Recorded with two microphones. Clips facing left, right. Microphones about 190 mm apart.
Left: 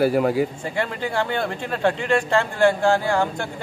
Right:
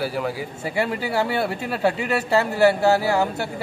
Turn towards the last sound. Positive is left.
turn(degrees=-5)  # may be behind; listen again after turning